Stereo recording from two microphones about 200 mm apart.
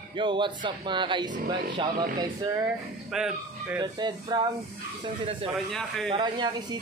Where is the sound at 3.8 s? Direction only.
20° right (ahead or behind).